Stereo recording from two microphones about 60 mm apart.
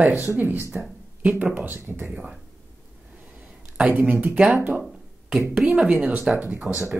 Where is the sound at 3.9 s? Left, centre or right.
Right.